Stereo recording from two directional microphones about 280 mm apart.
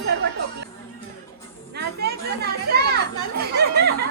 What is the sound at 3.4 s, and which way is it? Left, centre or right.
Speech, right.